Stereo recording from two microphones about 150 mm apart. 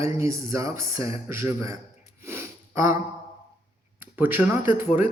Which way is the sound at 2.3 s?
15° right (ahead or behind).